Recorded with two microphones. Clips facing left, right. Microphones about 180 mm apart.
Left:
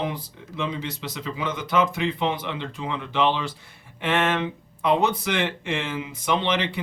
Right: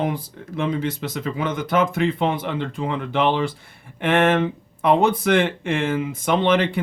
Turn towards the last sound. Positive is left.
turn(degrees=-50)  # may be behind; listen again after turning